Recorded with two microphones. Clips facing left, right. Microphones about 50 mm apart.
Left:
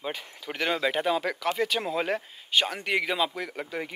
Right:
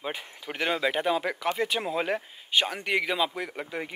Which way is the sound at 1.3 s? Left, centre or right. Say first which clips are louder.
Left 1 dB; centre.